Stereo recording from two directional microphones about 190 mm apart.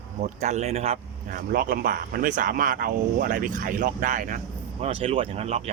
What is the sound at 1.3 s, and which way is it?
Speech, 45° right (ahead or behind).